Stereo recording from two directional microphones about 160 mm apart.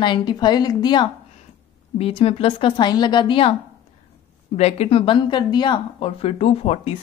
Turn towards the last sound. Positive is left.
turn(degrees=40)  # may be behind; listen again after turning